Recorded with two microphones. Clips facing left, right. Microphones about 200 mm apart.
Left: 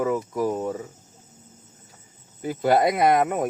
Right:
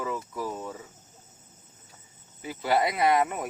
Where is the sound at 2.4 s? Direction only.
50° left (ahead or behind).